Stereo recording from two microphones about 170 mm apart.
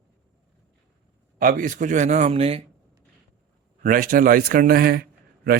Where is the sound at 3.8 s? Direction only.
55° right (ahead or behind).